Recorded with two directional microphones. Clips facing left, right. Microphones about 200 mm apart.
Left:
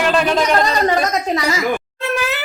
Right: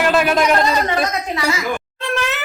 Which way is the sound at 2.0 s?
5° left (ahead or behind).